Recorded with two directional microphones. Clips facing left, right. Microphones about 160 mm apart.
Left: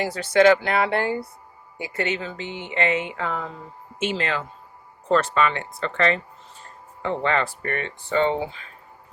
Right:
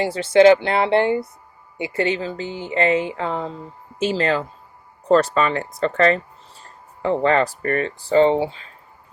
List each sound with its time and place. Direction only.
0.0 s speech: 25° right (ahead or behind)